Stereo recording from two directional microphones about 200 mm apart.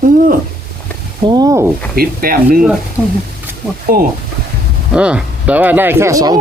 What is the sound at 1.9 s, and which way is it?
Speech, 50° right (ahead or behind).